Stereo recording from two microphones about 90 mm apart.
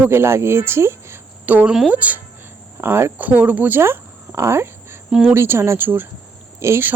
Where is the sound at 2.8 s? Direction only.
25° right (ahead or behind).